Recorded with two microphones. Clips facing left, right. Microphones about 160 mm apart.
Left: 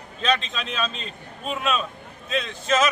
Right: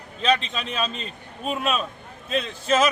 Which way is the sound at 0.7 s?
10° right (ahead or behind).